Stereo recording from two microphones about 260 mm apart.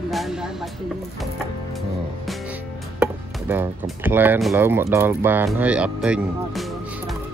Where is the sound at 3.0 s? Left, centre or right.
Centre.